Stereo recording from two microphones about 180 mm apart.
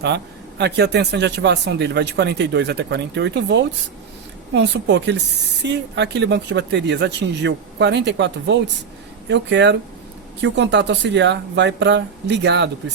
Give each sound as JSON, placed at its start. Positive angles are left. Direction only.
{"t": 0.6, "sound": "speech", "side_deg": -70}